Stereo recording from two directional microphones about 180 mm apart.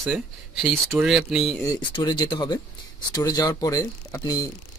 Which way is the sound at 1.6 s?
25° left (ahead or behind).